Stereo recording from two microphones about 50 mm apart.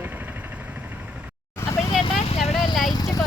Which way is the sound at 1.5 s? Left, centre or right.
Left.